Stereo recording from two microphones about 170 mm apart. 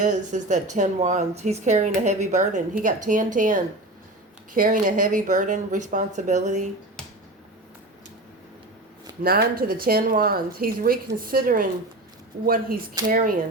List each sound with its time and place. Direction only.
0.0 s speech: 45° right (ahead or behind)
9.2 s speech: 65° right (ahead or behind)
13.1 s speech: 55° right (ahead or behind)